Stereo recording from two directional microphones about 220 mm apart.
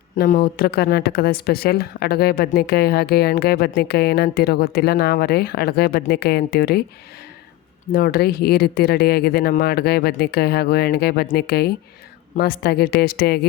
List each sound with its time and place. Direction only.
0.2 s speech: 45° left (ahead or behind)
7.9 s speech: 45° left (ahead or behind)